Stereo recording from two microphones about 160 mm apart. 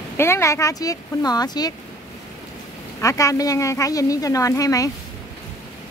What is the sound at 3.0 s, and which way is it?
A woman's voice, 20° left (ahead or behind).